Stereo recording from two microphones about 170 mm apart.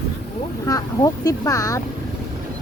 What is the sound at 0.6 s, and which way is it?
Speech, 20° left (ahead or behind).